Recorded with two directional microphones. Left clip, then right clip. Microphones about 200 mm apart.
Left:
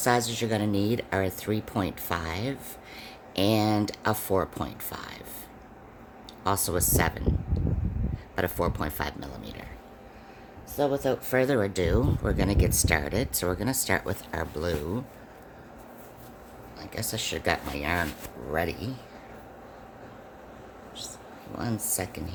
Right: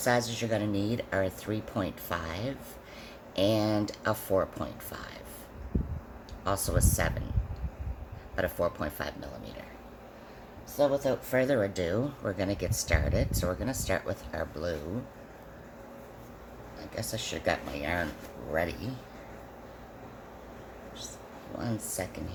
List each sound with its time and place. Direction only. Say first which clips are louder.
0.0 s speech: left 3 dB; 55° left (ahead or behind)
6.4 s speech: left 3 dB; 55° left (ahead or behind)
8.4 s speech: left 1 dB; 55° left (ahead or behind)
10.8 s speech: even; 55° left (ahead or behind)
16.8 s speech: left 3 dB; 55° left (ahead or behind)
21.6 s speech: left 3 dB; 55° left (ahead or behind)